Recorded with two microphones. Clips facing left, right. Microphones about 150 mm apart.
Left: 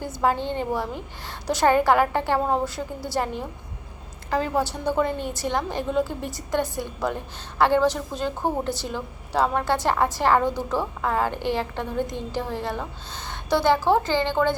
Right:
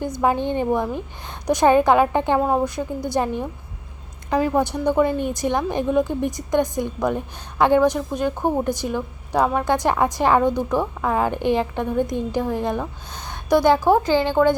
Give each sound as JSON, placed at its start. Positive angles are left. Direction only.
{"t": 0.0, "sound": "a woman's voice", "side_deg": -15}